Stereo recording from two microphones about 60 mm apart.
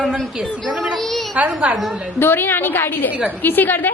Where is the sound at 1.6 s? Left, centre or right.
Right.